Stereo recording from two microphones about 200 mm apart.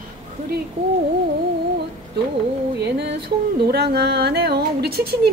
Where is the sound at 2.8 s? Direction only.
55° right (ahead or behind).